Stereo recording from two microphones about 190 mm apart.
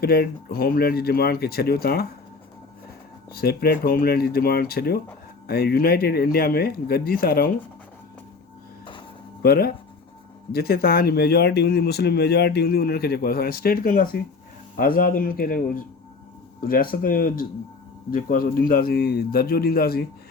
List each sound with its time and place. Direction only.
0.0 s speech: 55° left (ahead or behind)
3.3 s speech: 55° left (ahead or behind)
9.4 s speech: 55° left (ahead or behind)